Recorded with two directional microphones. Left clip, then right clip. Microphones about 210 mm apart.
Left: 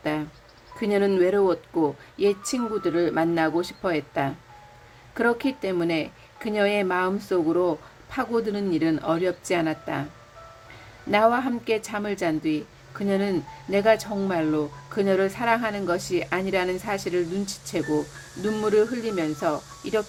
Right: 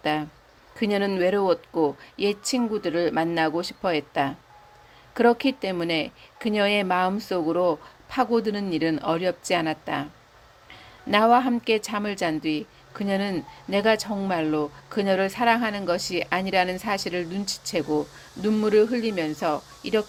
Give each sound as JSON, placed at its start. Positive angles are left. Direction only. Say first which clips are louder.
{"t": 0.0, "sound": "speech", "louder": "right 2 dB", "side_deg": -30}
{"t": 11.1, "sound": "speech", "louder": "right 2 dB", "side_deg": -30}